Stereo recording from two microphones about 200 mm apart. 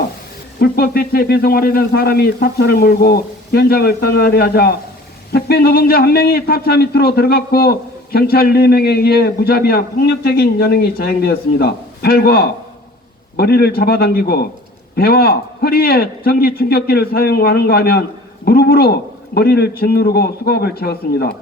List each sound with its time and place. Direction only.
0.6 s a man's voice: 50° left (ahead or behind)